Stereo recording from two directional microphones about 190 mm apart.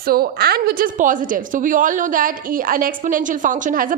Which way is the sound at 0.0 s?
50° right (ahead or behind).